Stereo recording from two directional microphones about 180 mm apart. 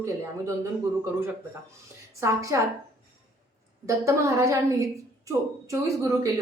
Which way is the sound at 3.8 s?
15° right (ahead or behind).